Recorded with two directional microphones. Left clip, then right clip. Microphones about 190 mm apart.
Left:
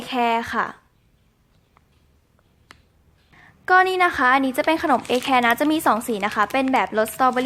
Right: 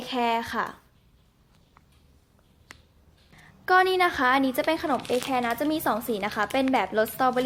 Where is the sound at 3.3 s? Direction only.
15° left (ahead or behind).